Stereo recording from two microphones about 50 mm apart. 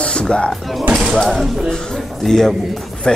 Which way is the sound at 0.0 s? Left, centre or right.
Centre.